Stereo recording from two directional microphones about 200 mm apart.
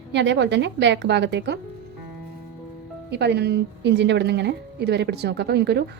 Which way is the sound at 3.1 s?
55° right (ahead or behind).